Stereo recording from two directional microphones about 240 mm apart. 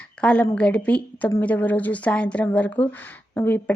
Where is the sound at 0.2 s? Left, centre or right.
Centre.